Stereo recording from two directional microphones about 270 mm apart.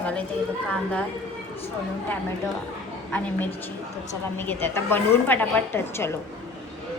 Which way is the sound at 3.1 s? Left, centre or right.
Centre.